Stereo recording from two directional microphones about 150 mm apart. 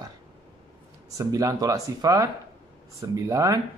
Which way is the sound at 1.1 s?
25° right (ahead or behind).